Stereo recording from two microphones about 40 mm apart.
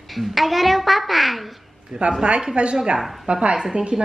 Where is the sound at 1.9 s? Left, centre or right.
Centre.